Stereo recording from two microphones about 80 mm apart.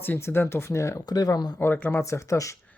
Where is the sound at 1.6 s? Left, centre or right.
Left.